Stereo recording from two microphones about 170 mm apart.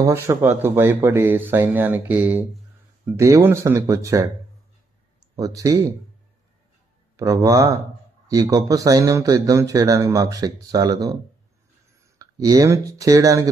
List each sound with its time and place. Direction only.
0.0 s speech: 15° right (ahead or behind)
5.3 s a man's voice: 20° right (ahead or behind)
7.2 s a man's voice: 20° right (ahead or behind)
12.2 s a man's voice: 20° right (ahead or behind)